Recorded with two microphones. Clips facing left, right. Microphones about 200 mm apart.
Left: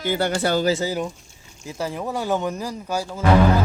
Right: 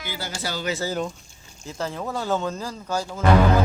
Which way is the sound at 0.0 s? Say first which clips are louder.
Left 10 dB; 60° left (ahead or behind).